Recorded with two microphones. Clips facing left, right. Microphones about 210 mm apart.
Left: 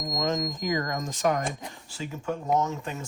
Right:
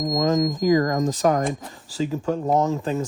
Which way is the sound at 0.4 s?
45° right (ahead or behind).